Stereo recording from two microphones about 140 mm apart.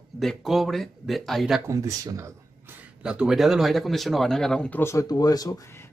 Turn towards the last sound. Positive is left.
turn(degrees=25)  # may be behind; listen again after turning